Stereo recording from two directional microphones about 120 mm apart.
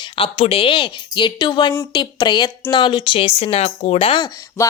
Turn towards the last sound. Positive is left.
turn(degrees=25)  # may be behind; listen again after turning